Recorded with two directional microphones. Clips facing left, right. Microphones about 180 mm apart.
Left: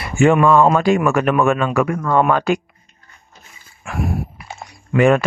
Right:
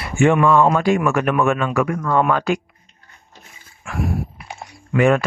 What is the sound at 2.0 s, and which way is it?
Speech, 45° left (ahead or behind).